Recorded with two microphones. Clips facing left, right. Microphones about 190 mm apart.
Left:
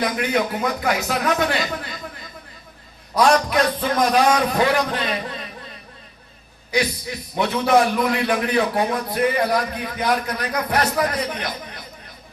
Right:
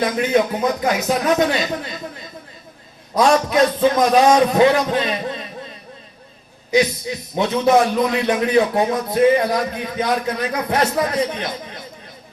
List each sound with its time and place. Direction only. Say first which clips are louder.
0.0 s a man's voice: right 4 dB; 20° right (ahead or behind)
3.2 s a man's voice: right 2 dB; 20° right (ahead or behind)
6.7 s a man's voice: right 5 dB; 20° right (ahead or behind)